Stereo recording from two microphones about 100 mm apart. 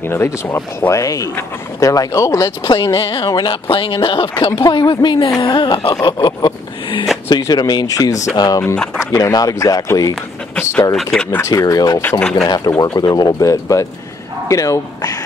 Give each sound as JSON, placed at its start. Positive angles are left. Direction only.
{"t": 0.0, "sound": "speech", "side_deg": 25}
{"t": 2.6, "sound": "speech", "side_deg": 45}
{"t": 3.3, "sound": "speech", "side_deg": 45}
{"t": 3.6, "sound": "speech", "side_deg": 60}
{"t": 4.4, "sound": "speech", "side_deg": 30}
{"t": 4.7, "sound": "speech", "side_deg": 50}
{"t": 11.0, "sound": "speech", "side_deg": 5}
{"t": 11.4, "sound": "speech", "side_deg": 35}
{"t": 12.2, "sound": "speech", "side_deg": 5}
{"t": 12.4, "sound": "speech", "side_deg": 40}